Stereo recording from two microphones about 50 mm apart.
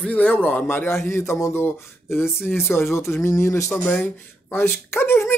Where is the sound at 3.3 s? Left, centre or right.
Left.